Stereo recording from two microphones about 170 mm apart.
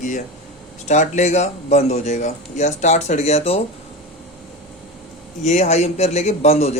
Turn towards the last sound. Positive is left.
turn(degrees=40)  # may be behind; listen again after turning